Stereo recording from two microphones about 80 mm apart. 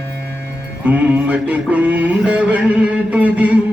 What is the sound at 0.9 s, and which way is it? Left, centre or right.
Music, centre.